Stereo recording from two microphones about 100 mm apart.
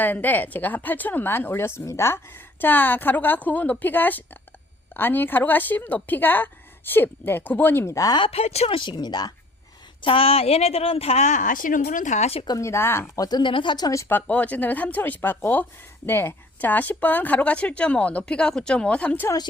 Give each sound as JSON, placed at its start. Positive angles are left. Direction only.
{"t": 0.0, "sound": "a woman's voice", "side_deg": 20}
{"t": 8.2, "sound": "speech", "side_deg": 85}
{"t": 8.8, "sound": "speech", "side_deg": 45}
{"t": 10.0, "sound": "speech", "side_deg": 65}
{"t": 12.2, "sound": "speech", "side_deg": 80}
{"t": 12.5, "sound": "a woman's voice", "side_deg": 30}
{"t": 13.1, "sound": "speech", "side_deg": 45}
{"t": 14.1, "sound": "speech", "side_deg": 15}